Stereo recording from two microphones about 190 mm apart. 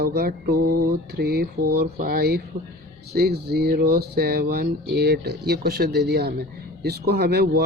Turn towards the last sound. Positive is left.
turn(degrees=-55)  # may be behind; listen again after turning